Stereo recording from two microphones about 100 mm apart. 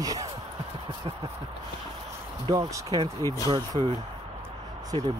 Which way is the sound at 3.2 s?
30° left (ahead or behind).